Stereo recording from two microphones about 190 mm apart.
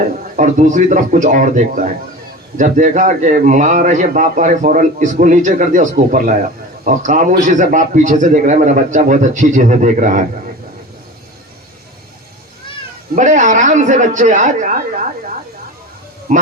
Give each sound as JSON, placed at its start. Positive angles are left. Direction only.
{"t": 0.3, "sound": "a man's voice", "side_deg": -40}
{"t": 13.1, "sound": "a man's voice", "side_deg": -40}